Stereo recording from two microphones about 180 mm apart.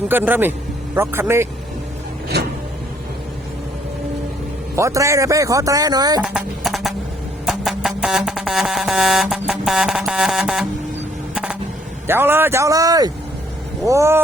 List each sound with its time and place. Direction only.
0.1 s speech: 10° right (ahead or behind)
2.3 s printer: 65° right (ahead or behind)
4.7 s speech: 15° right (ahead or behind)
6.2 s music: 5° right (ahead or behind)
12.0 s speech: 10° right (ahead or behind)